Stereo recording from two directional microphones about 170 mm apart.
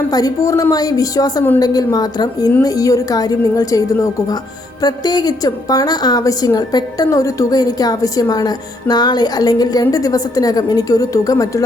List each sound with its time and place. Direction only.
0.1 s a woman's voice: 20° left (ahead or behind)